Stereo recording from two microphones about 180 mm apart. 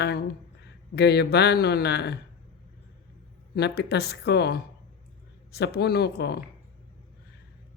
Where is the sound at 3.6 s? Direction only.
65° left (ahead or behind).